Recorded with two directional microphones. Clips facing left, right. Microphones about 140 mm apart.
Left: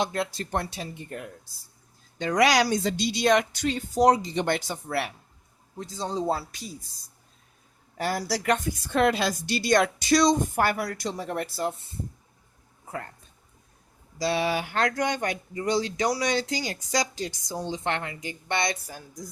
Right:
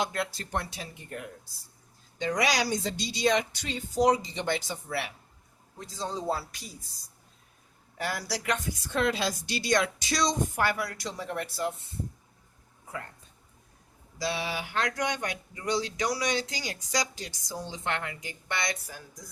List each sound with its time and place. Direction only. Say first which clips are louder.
0.0 s speech: left 3 dB; 25° left (ahead or behind)
0.5 s speech: left 4 dB; 35° left (ahead or behind)
2.2 s speech: left 6 dB; 65° left (ahead or behind)
4.0 s a woman's voice: left 4 dB; 50° left (ahead or behind)
5.8 s speech: left 4 dB; 25° left (ahead or behind)
7.9 s a woman's voice: left 5 dB; 40° left (ahead or behind)
14.3 s a woman's voice: left 9 dB; 55° left (ahead or behind)
15.5 s speech: left 4 dB; 30° left (ahead or behind)